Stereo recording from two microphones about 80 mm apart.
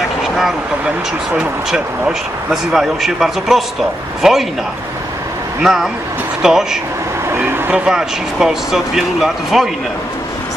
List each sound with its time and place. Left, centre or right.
0.2 s speech: centre
5.6 s speech: centre
7.3 s vehicle: right
7.7 s speech: centre